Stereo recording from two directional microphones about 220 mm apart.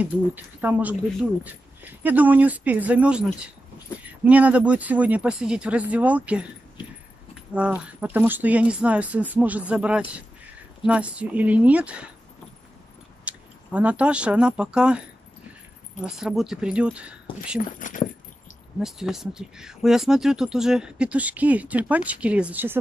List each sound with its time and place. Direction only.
0.0 s speech: 10° right (ahead or behind)
7.5 s speech: 5° right (ahead or behind)
13.2 s speech: 5° right (ahead or behind)
17.7 s speech: 35° left (ahead or behind)
18.8 s speech: centre (ahead or behind)